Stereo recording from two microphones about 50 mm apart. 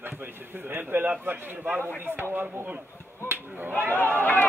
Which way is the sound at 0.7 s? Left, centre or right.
Right.